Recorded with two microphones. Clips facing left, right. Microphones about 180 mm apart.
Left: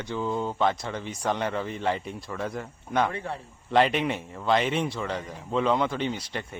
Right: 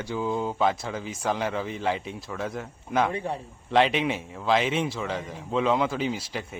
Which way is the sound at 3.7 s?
Centre (ahead or behind).